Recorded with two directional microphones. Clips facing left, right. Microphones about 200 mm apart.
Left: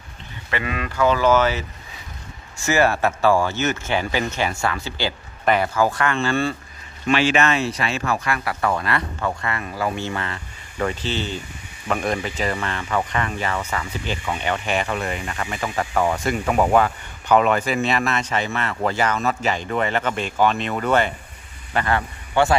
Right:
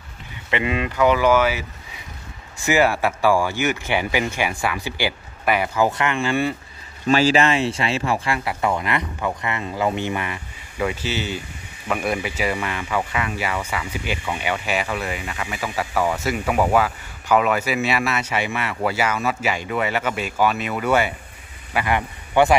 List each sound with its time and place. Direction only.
0.5 s speech: 20° right (ahead or behind)
7.1 s speech: 40° right (ahead or behind); by 22.6 s 15° right (ahead or behind)